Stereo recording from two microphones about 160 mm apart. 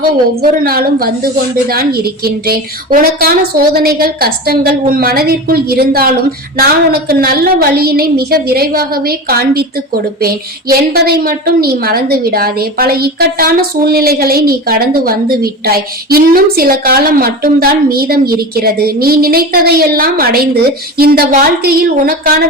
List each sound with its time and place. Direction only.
0.6 s a woman's voice: 70° right (ahead or behind)